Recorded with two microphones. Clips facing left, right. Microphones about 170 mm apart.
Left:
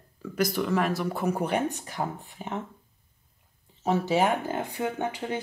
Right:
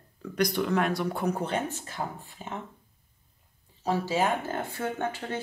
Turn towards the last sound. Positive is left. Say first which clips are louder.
# left 1 dB
turn(degrees=15)  # may be behind; listen again after turning